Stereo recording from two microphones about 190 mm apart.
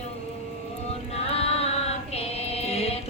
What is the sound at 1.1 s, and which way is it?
Music, 30° left (ahead or behind).